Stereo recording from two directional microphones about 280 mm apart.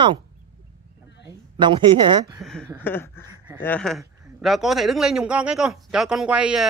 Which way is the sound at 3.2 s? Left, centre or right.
Centre.